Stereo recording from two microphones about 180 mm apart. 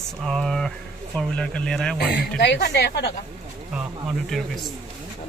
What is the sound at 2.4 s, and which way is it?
Speech, 70° left (ahead or behind).